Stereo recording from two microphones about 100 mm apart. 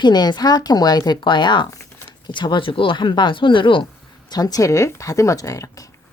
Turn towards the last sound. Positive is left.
turn(degrees=35)  # may be behind; listen again after turning